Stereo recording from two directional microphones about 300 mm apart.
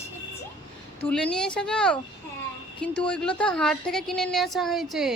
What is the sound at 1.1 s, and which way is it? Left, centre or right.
Speech, centre.